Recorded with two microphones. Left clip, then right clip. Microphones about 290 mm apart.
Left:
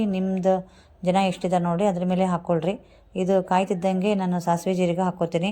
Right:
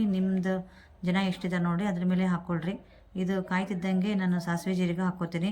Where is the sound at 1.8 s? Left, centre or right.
Left.